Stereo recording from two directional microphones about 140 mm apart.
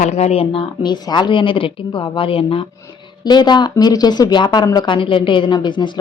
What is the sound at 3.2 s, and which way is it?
A woman's voice, 30° left (ahead or behind).